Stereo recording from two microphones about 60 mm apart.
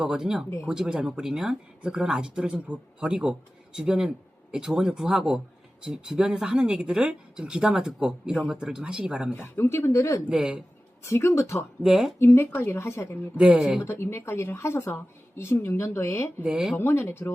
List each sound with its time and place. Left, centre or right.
0.0 s speech: centre
9.3 s speech: left
10.2 s speech: centre
11.0 s speech: left
11.8 s speech: centre
12.2 s speech: left
12.5 s a woman's voice: left
12.8 s speech: left
13.4 s speech: centre
13.8 s speech: left
16.4 s speech: centre
16.8 s speech: left